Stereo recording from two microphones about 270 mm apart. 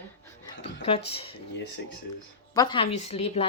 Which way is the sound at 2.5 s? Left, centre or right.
Centre.